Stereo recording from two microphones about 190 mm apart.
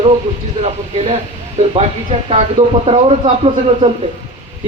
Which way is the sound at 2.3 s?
35° right (ahead or behind).